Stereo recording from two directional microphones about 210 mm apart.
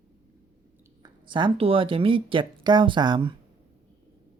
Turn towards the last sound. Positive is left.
turn(degrees=-20)  # may be behind; listen again after turning